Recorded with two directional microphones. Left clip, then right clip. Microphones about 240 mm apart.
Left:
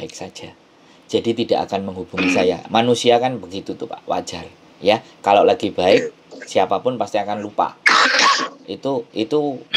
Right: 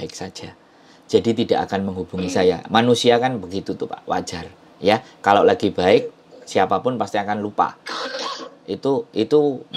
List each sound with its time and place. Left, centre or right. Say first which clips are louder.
0.0 s speech: even; centre
7.8 s cough: left 14 dB; left
8.3 s a sound: left 14 dB; left
8.6 s speech: right 1 dB; centre